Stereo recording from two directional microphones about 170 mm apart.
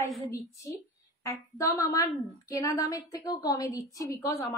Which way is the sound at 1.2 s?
20° left (ahead or behind).